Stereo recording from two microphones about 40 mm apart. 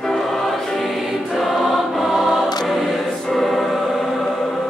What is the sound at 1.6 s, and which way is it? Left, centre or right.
Choir, centre.